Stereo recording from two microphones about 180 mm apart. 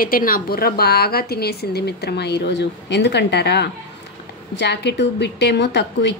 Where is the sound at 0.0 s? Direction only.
55° left (ahead or behind).